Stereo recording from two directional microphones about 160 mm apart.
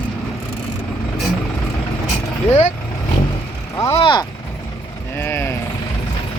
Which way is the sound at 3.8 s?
25° left (ahead or behind).